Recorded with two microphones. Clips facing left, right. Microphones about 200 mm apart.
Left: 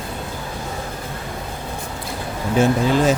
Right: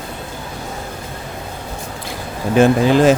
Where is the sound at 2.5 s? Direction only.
85° right.